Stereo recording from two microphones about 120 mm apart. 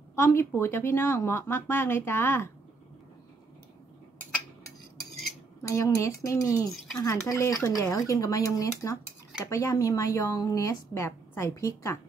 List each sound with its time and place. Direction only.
0.1 s speech: 20° left (ahead or behind)
5.6 s speech: 25° left (ahead or behind)